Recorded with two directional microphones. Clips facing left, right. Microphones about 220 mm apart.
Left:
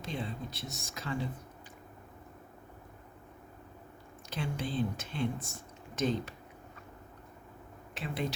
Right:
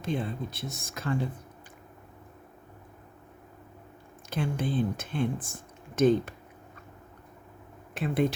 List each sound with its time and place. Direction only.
0.0 s speech: 55° right (ahead or behind)
4.3 s speech: 50° right (ahead or behind)
7.9 s speech: 50° right (ahead or behind)